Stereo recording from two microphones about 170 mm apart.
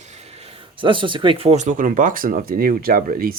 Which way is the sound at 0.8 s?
30° right (ahead or behind).